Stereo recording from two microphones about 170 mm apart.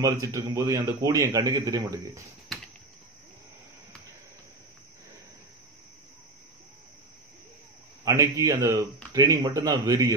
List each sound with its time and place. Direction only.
0.0 s a man's voice: 20° right (ahead or behind)
8.0 s a man's voice: 20° right (ahead or behind)